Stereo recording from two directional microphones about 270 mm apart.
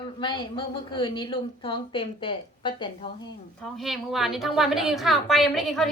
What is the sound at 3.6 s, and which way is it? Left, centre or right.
A woman's voice, centre.